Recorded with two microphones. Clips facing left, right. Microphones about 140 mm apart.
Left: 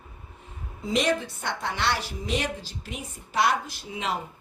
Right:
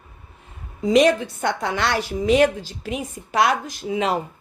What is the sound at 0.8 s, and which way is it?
A woman's voice, 90° right.